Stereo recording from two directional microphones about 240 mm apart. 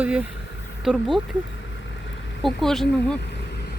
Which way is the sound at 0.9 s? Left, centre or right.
Centre.